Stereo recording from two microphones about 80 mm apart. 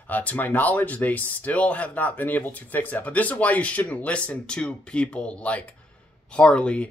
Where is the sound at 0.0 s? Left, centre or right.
Left.